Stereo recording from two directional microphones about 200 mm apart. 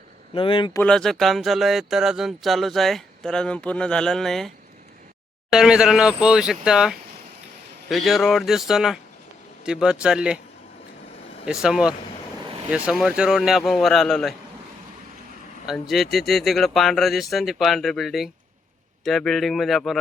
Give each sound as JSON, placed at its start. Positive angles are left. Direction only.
{"t": 0.3, "sound": "speech", "side_deg": 25}
{"t": 0.8, "sound": "speech", "side_deg": 5}
{"t": 11.6, "sound": "speech", "side_deg": -5}
{"t": 15.6, "sound": "speech", "side_deg": 0}